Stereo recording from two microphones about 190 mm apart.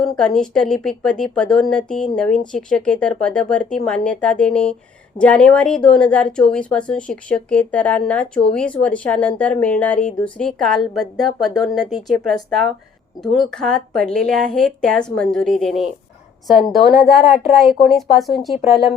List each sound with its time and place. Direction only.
0.0 s a woman's voice: centre (ahead or behind)
18.6 s speech: 35° left (ahead or behind)